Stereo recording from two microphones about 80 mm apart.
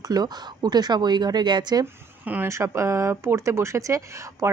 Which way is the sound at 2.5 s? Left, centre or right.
Right.